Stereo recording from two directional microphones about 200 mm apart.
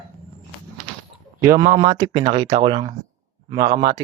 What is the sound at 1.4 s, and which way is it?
Speech, 20° right (ahead or behind).